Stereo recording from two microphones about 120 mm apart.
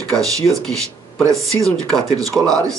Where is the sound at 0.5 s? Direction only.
5° left (ahead or behind).